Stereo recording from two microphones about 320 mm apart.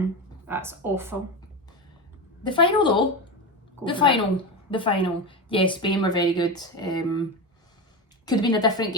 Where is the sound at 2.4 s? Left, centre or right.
Centre.